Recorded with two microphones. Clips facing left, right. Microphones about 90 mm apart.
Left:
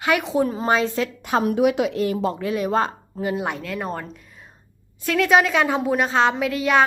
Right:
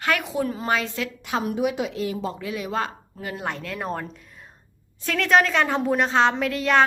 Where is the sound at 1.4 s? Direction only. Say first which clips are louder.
Left 6 dB; 75° left (ahead or behind); by 3.2 s 35° left (ahead or behind).